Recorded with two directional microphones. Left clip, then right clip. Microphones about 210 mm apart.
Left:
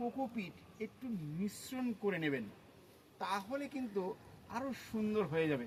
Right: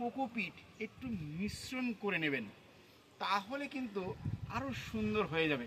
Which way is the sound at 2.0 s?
15° left (ahead or behind).